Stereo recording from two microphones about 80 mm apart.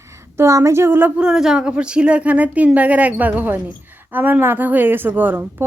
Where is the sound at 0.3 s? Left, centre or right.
Right.